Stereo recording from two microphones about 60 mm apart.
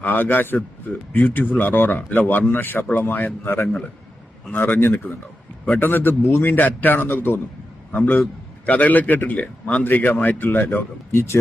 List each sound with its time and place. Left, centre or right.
0.0 s a man's voice: left